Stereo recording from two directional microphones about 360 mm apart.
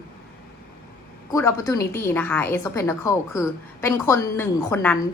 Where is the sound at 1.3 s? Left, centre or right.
Centre.